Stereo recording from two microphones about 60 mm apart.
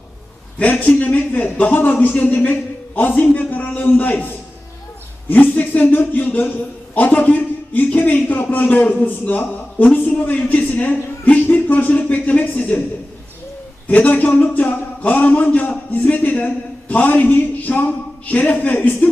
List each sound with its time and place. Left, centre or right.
0.6 s a man's voice: left
5.3 s a man's voice: left
13.8 s a man's voice: left